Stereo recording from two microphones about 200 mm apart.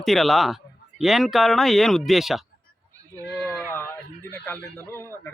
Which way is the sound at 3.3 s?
10° left (ahead or behind).